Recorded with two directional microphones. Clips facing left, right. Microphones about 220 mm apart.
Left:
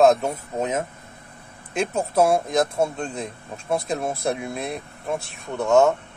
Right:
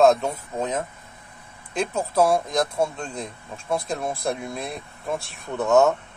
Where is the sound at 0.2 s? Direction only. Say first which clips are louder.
Left 1 dB; 25° left (ahead or behind).